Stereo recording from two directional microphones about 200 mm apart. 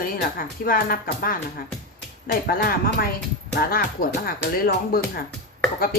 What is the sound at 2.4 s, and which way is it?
Speech, 50° left (ahead or behind).